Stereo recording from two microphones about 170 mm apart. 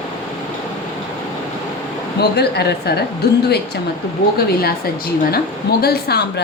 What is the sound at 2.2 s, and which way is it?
Speech, 70° left (ahead or behind).